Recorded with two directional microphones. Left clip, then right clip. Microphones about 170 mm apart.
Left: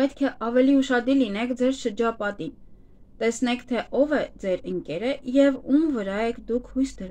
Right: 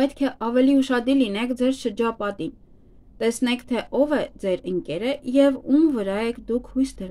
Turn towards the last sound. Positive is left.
turn(degrees=-35)  # may be behind; listen again after turning